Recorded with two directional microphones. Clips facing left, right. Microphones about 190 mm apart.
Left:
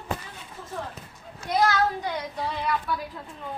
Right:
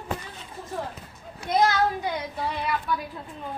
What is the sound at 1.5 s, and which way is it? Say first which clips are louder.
Speech: right 1 dB; 15° right (ahead or behind).